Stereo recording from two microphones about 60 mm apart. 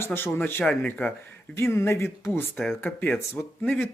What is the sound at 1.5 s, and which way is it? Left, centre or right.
Speech, left.